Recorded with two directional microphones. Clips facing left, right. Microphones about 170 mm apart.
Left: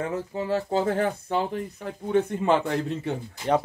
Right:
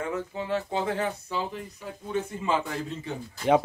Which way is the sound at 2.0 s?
65° left (ahead or behind).